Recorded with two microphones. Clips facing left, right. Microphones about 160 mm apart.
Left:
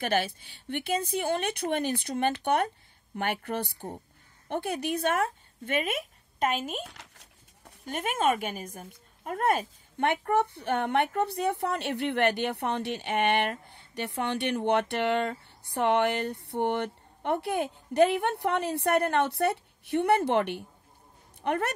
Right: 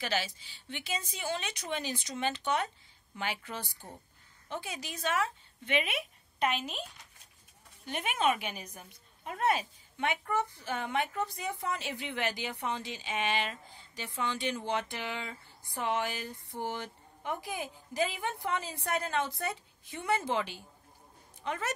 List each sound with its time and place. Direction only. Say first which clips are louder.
0.0 s a woman's voice: left 6 dB; 55° left (ahead or behind)
6.9 s goat: left 7 dB; 75° left (ahead or behind)
7.8 s a woman's voice: left 3 dB; 45° left (ahead or behind); by 21.7 s 60° left (ahead or behind)